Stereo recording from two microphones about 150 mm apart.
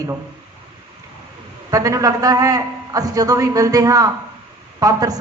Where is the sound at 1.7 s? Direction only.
25° right (ahead or behind).